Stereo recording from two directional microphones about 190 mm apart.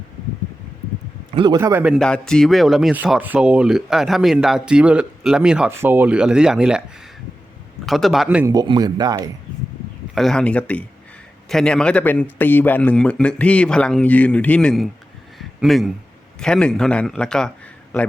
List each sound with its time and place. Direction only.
1.3 s a man's voice: 25° right (ahead or behind)
1.5 s speech: 15° right (ahead or behind)
7.9 s speech: centre (ahead or behind)
8.4 s speech: 20° right (ahead or behind)
10.2 s a man's voice: 5° left (ahead or behind)
15.4 s a sound: centre (ahead or behind)
16.4 s speech: 5° left (ahead or behind)